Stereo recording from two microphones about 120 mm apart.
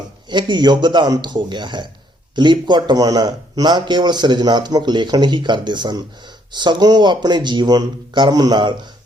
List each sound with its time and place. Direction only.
0.3 s speech: 40° right (ahead or behind)